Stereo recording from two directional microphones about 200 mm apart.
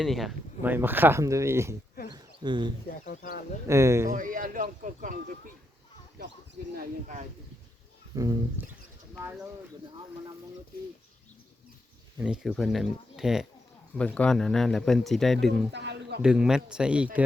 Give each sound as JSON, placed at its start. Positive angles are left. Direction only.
{"t": 0.0, "sound": "speech", "side_deg": 0}
{"t": 2.1, "sound": "a sound", "side_deg": -20}
{"t": 2.9, "sound": "speech", "side_deg": 45}
{"t": 3.7, "sound": "speech", "side_deg": -15}
{"t": 4.1, "sound": "speech", "side_deg": -45}
{"t": 6.7, "sound": "speech", "side_deg": -40}
{"t": 8.1, "sound": "speech", "side_deg": -15}
{"t": 12.2, "sound": "speech", "side_deg": -5}
{"t": 15.7, "sound": "a sound", "side_deg": -60}
{"t": 16.2, "sound": "speech", "side_deg": -5}